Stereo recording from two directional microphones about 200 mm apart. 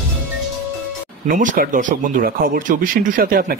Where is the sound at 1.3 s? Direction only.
40° right (ahead or behind).